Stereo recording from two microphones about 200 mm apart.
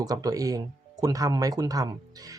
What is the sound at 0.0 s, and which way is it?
Speech, 20° right (ahead or behind).